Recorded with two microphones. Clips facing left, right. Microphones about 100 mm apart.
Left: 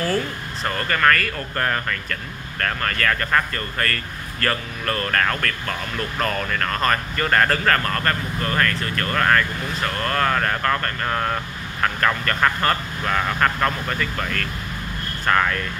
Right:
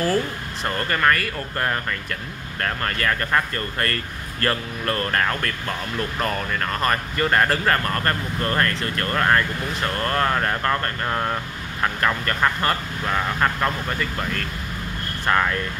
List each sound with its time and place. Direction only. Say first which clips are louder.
0.7 s speech: left 1 dB; 20° right (ahead or behind)
8.4 s speech: even; 30° right (ahead or behind); by 15.6 s 15° right (ahead or behind)